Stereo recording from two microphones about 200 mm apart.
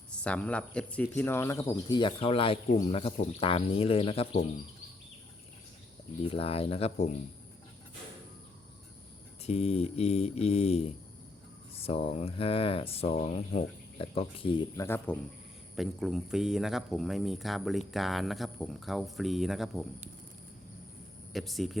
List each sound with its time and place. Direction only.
0.1 s speech: 5° left (ahead or behind)
1.9 s speech: 25° left (ahead or behind)
6.2 s speech: 30° left (ahead or behind)
9.4 s mantra: 30° left (ahead or behind)
11.8 s speech: 30° left (ahead or behind)
14.8 s speech: 10° left (ahead or behind)
21.3 s speech: centre (ahead or behind)